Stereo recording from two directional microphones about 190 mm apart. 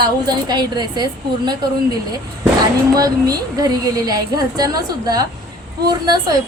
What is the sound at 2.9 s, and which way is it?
A woman's voice, 20° right (ahead or behind).